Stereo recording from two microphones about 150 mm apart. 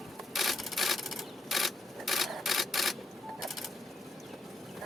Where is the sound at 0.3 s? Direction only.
Centre (ahead or behind).